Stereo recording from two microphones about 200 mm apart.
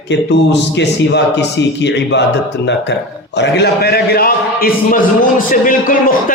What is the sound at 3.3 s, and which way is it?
A man's voice, 60° left (ahead or behind).